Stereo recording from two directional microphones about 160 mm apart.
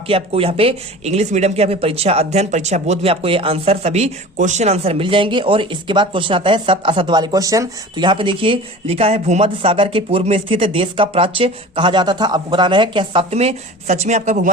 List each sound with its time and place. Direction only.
0.1 s speech: 35° right (ahead or behind)